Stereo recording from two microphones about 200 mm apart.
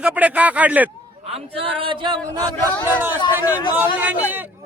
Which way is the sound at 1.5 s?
25° right (ahead or behind).